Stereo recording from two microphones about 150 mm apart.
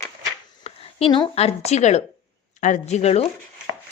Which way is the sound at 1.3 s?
45° left (ahead or behind).